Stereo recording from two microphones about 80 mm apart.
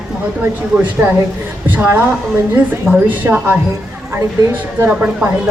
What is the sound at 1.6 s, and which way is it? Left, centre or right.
Speech, right.